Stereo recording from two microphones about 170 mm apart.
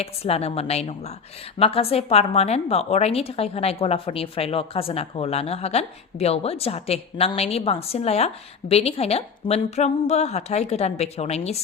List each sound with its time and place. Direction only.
0.0 s a woman's voice: 35° left (ahead or behind)